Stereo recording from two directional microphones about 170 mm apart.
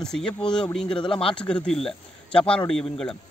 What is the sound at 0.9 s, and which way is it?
Speech, 30° left (ahead or behind).